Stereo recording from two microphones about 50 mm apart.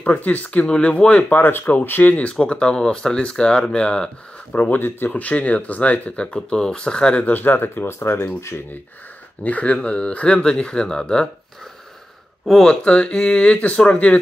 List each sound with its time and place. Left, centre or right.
0.0 s speech: left
2.2 s speech: left
4.6 s speech: left
5.1 s speech: left
6.3 s speech: centre
7.2 s speech: left
8.4 s speech: left
9.4 s speech: left; by 11.2 s centre
12.6 s speech: left